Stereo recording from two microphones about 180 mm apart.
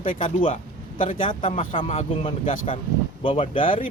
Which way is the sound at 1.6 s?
35° left (ahead or behind).